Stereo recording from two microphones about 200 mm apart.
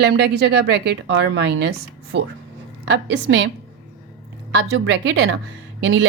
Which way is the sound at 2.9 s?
60° right (ahead or behind).